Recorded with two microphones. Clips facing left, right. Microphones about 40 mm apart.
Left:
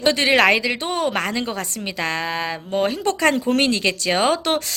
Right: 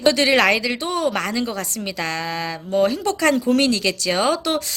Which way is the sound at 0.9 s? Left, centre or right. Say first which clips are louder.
Even; left.